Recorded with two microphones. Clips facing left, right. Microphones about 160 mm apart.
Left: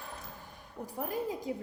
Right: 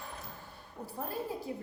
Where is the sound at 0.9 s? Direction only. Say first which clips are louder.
Left 3 dB; 15° left (ahead or behind).